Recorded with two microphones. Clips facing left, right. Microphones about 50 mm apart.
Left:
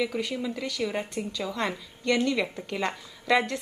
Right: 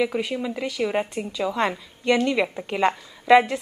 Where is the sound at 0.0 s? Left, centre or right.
Right.